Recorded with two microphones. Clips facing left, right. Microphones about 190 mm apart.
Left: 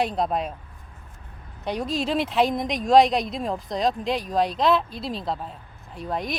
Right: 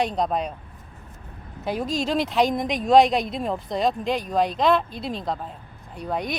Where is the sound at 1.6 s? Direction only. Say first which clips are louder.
Right 1 dB; centre (ahead or behind).